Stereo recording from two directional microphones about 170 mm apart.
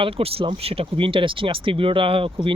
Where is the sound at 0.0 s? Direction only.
35° right (ahead or behind).